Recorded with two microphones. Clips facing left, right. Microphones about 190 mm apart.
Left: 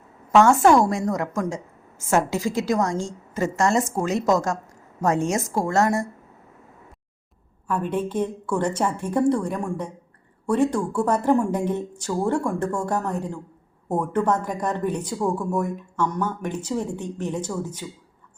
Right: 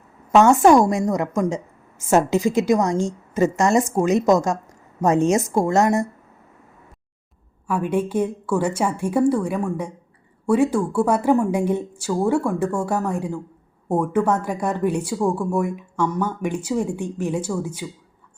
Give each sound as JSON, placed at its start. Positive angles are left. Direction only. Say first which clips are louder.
{"t": 0.3, "sound": "a woman's voice", "louder": "right 2 dB", "side_deg": -20}
{"t": 7.7, "sound": "a woman's voice", "louder": "right 3 dB", "side_deg": -10}